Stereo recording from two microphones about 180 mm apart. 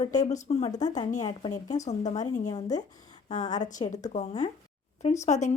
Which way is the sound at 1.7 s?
40° left (ahead or behind).